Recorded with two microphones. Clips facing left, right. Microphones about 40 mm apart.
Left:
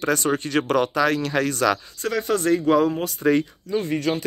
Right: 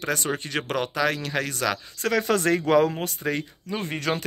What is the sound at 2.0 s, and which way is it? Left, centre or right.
Speech, right.